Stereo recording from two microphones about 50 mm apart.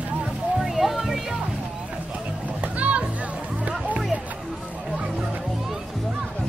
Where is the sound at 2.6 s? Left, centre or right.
Right.